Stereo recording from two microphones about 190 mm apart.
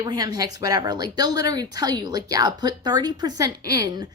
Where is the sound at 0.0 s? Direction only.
20° right (ahead or behind).